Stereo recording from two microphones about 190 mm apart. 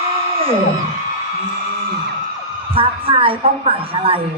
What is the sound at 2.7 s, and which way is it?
Speech, 30° right (ahead or behind).